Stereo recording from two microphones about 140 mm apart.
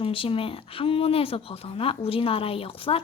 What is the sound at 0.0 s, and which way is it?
Speech, 40° left (ahead or behind).